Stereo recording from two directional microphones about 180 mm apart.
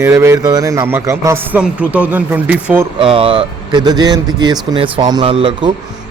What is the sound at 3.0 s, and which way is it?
Speech, 30° right (ahead or behind).